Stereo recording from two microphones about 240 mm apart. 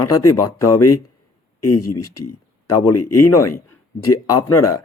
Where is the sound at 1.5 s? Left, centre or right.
Left.